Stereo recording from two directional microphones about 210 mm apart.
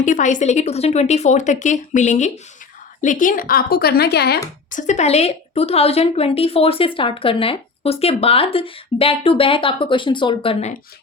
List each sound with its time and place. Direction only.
0.0 s a woman's voice: 35° left (ahead or behind)
4.7 s a woman's voice: 35° left (ahead or behind)